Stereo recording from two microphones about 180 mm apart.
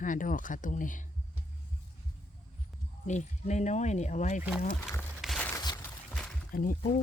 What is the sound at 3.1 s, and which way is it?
Speech, 40° left (ahead or behind).